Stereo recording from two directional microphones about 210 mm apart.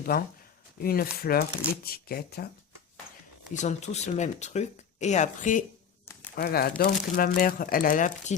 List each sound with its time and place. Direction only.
0.0 s speech: 45° left (ahead or behind)
3.5 s speech: 35° left (ahead or behind)